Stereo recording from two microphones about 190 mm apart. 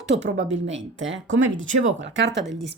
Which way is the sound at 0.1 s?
60° right (ahead or behind).